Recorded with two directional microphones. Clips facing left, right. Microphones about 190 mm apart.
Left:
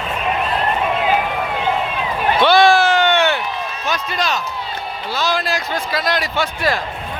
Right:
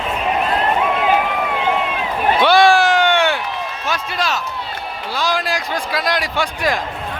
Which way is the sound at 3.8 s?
5° right (ahead or behind).